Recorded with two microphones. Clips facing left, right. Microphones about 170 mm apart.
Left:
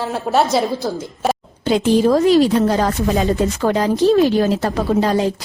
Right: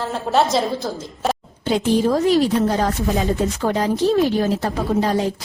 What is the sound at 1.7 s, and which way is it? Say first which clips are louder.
A woman's voice: left 4 dB; 90° left.